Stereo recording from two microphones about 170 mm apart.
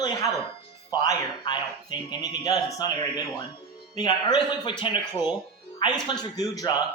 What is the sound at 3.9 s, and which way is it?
A man's voice, 25° left (ahead or behind).